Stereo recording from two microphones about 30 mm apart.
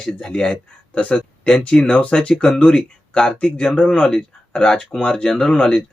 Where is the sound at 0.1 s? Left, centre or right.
Left.